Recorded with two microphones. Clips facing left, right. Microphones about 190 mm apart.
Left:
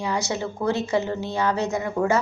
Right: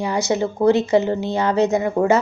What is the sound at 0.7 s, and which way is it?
A woman's voice, 20° right (ahead or behind).